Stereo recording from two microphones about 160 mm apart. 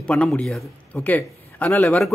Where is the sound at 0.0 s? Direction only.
5° left (ahead or behind).